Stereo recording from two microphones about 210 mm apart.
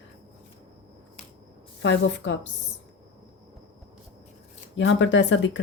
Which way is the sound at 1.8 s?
60° left (ahead or behind).